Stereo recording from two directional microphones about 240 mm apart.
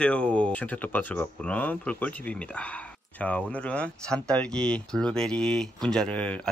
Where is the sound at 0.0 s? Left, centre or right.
Centre.